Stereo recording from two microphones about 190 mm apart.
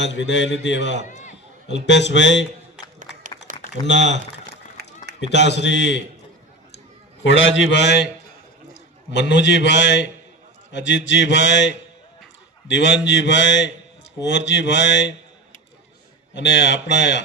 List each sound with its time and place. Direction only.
0.0 s a man's voice: 70° left (ahead or behind)
1.0 s speech: 40° left (ahead or behind)
1.6 s a man's voice: 70° left (ahead or behind)
3.5 s a sound: 45° right (ahead or behind)
3.8 s a man's voice: 70° left (ahead or behind)
4.8 s run: 55° right (ahead or behind)
5.2 s a man's voice: 65° left (ahead or behind)
7.3 s a man's voice: 80° left
16.3 s a man's voice: 65° left (ahead or behind)